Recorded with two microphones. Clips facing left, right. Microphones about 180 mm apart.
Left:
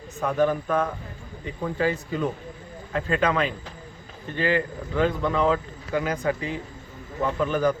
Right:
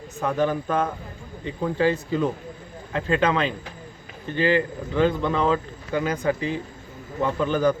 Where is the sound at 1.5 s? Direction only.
30° right (ahead or behind).